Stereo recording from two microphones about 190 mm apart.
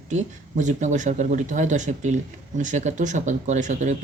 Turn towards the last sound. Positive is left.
turn(degrees=-40)  # may be behind; listen again after turning